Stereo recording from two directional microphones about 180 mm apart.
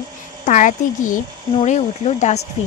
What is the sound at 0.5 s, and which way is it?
Speech, 45° left (ahead or behind).